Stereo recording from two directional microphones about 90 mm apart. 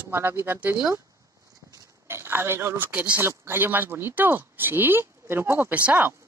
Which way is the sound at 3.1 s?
25° right (ahead or behind).